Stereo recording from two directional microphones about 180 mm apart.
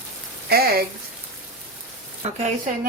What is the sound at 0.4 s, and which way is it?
Speech, 60° right (ahead or behind).